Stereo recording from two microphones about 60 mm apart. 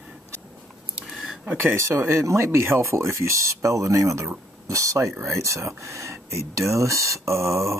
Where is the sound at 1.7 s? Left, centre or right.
Right.